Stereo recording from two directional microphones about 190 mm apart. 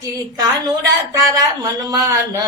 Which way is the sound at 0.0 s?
20° right (ahead or behind).